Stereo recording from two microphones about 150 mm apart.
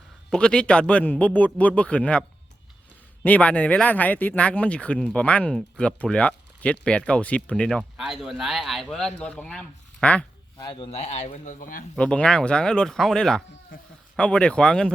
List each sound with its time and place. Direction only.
0.3 s speech: 5° left (ahead or behind)
3.2 s speech: 10° left (ahead or behind)
10.6 s a man's voice: 35° left (ahead or behind); by 11.9 s 65° left (ahead or behind)
11.9 s speech: 5° left (ahead or behind)